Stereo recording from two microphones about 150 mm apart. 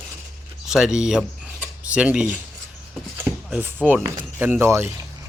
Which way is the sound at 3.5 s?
10° right (ahead or behind).